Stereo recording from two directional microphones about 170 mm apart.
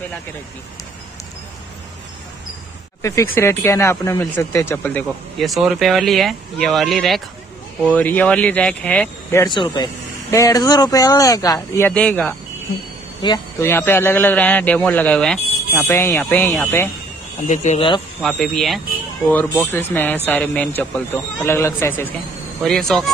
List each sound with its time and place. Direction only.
3.0 s speech: 15° left (ahead or behind)
9.5 s speech: 25° left (ahead or behind)
11.9 s speech: 5° left (ahead or behind)
13.2 s speech: 25° left (ahead or behind)
13.7 s speech: 15° left (ahead or behind)
17.5 s speech: 45° left (ahead or behind)
18.2 s speech: centre (ahead or behind)
19.3 s speech: 10° left (ahead or behind)